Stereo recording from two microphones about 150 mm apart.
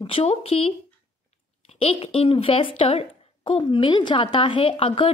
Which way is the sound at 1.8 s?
40° left (ahead or behind).